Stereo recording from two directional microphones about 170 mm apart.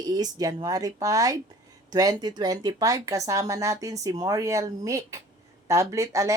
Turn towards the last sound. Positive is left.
turn(degrees=-20)  # may be behind; listen again after turning